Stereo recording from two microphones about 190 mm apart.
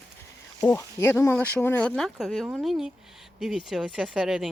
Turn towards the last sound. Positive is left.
turn(degrees=0)  # may be behind; listen again after turning